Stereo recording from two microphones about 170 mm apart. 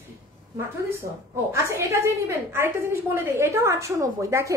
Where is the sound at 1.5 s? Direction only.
15° right (ahead or behind).